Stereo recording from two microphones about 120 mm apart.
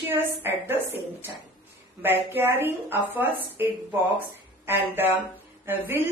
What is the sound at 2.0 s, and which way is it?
A woman's voice, 15° right (ahead or behind).